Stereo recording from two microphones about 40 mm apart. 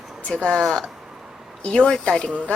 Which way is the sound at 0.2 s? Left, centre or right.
Left.